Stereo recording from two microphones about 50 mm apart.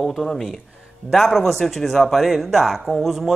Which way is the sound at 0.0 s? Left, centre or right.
Centre.